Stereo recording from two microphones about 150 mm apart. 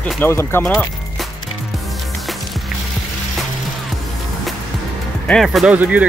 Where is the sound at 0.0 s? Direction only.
10° left (ahead or behind).